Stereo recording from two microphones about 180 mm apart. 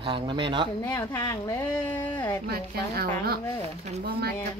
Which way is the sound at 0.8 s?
20° left (ahead or behind).